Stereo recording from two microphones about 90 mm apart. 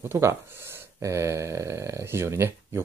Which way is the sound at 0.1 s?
30° right (ahead or behind).